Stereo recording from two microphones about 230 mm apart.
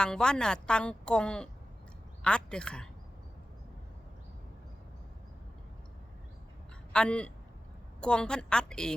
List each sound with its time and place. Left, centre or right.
0.0 s a woman's voice: centre
6.9 s a woman's voice: centre